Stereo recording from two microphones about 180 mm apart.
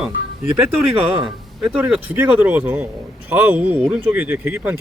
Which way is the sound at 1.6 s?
5° right (ahead or behind).